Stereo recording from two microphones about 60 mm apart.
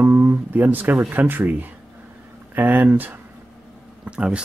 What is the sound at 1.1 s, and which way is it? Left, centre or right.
Speech, right.